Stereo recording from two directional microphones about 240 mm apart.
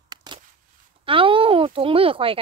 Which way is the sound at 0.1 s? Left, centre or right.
Centre.